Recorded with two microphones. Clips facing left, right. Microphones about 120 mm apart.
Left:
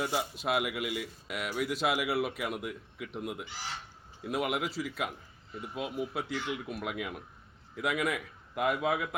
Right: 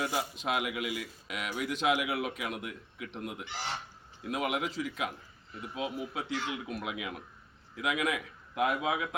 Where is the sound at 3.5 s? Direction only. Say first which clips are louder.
Right 4 dB; 65° right (ahead or behind).